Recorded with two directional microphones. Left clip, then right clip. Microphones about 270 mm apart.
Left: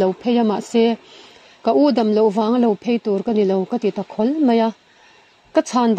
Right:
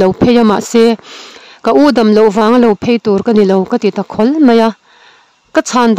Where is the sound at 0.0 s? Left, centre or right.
Right.